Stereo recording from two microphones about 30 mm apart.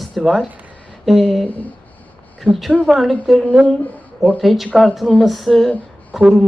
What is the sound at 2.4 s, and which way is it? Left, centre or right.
Speech, right.